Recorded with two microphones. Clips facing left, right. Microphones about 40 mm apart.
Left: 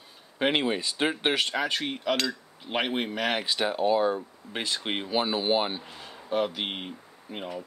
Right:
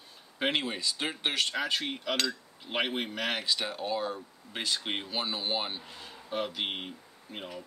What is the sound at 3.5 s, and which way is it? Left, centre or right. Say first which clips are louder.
Speech: left 7 dB; centre.